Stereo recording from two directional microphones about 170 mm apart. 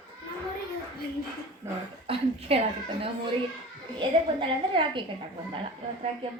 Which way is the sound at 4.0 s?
30° right (ahead or behind).